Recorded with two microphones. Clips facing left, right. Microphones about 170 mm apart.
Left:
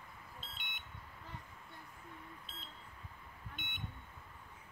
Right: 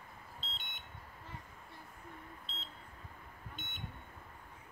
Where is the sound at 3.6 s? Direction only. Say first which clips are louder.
Even; 55° left (ahead or behind).